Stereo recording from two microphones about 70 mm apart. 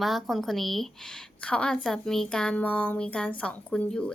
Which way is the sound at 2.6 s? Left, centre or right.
Left.